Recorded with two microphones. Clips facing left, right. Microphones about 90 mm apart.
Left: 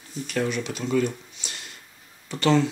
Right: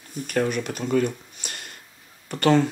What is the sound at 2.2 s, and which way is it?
Speech, 50° right (ahead or behind).